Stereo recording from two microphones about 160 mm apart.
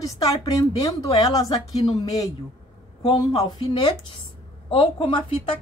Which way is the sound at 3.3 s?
25° left (ahead or behind).